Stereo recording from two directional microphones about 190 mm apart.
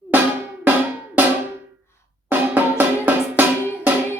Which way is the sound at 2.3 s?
10° right (ahead or behind).